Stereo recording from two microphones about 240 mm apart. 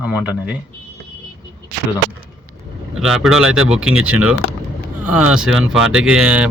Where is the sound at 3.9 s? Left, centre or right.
Right.